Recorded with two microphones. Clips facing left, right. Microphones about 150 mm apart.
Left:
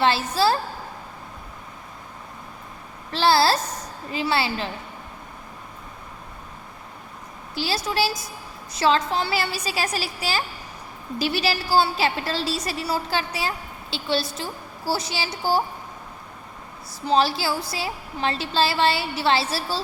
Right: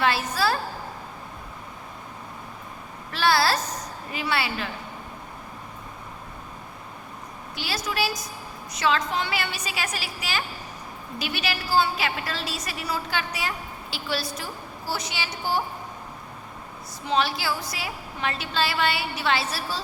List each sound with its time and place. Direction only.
0.0 s a woman's voice: 30° left (ahead or behind)
3.1 s a woman's voice: 30° left (ahead or behind)
7.5 s a woman's voice: 30° left (ahead or behind)
17.1 s a woman's voice: 30° left (ahead or behind)